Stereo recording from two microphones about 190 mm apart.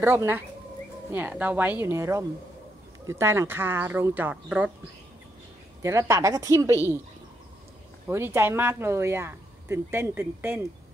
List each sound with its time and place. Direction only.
0.0 s speech: 10° right (ahead or behind)
5.8 s speech: 15° right (ahead or behind)
8.1 s speech: 15° right (ahead or behind)